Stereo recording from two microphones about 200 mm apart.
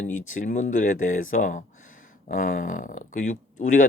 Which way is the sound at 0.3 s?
40° left (ahead or behind).